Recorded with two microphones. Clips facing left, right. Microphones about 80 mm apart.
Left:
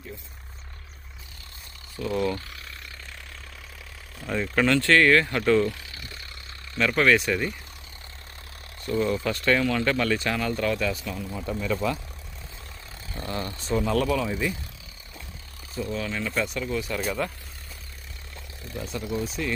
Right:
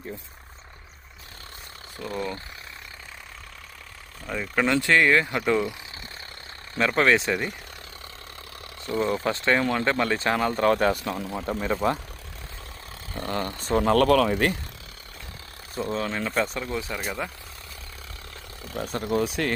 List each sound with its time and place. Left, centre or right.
2.0 s speech: right
4.2 s speech: centre
4.6 s speech: centre
6.7 s speech: right
9.0 s speech: right
11.0 s speech: right
11.7 s speech: right
13.1 s speech: right
15.8 s speech: right
16.9 s speech: right
18.6 s a sound: right
19.0 s speech: right